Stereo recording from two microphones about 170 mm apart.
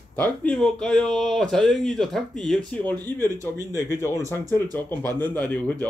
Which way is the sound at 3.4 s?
20° right (ahead or behind).